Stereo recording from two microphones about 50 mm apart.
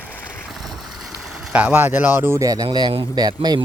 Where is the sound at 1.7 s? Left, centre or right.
Right.